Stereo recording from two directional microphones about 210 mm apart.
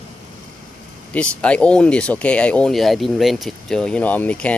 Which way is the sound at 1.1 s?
5° left (ahead or behind).